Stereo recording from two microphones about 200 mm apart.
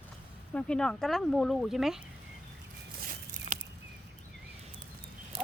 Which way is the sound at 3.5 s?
35° right (ahead or behind).